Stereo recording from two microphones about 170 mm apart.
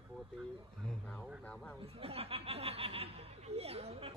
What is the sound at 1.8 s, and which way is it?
Speech, 35° right (ahead or behind).